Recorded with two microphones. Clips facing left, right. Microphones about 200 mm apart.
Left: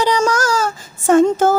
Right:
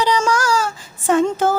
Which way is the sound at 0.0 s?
45° left (ahead or behind).